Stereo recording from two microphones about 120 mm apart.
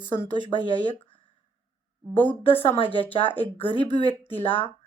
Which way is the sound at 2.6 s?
50° left (ahead or behind).